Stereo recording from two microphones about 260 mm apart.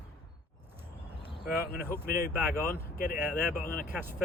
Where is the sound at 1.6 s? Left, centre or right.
Left.